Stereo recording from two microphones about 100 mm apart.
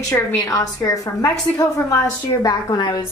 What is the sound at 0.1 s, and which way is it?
A woman's voice, 35° left (ahead or behind).